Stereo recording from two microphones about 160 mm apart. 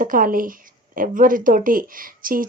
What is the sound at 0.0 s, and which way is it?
A woman's voice, 60° right (ahead or behind).